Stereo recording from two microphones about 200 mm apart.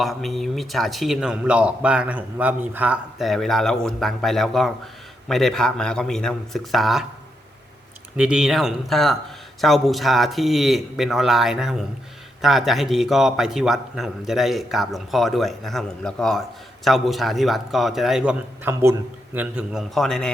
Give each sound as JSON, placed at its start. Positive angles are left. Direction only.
{"t": 0.0, "sound": "a man's voice", "side_deg": 0}
{"t": 8.1, "sound": "a man's voice", "side_deg": -5}